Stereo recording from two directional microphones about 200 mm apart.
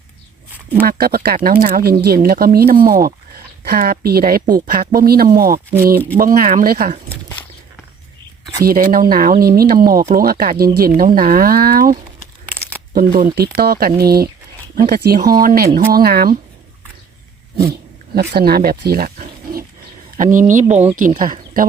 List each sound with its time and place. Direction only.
0.9 s speech: 50° right (ahead or behind)
8.6 s speech: 45° right (ahead or behind)
13.1 s speech: 50° right (ahead or behind)
17.6 s speech: 50° right (ahead or behind)